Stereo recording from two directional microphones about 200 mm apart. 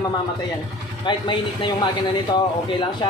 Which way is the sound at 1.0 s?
25° left (ahead or behind).